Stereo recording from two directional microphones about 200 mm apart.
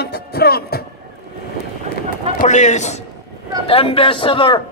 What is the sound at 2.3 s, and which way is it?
A man's voice, 35° left (ahead or behind).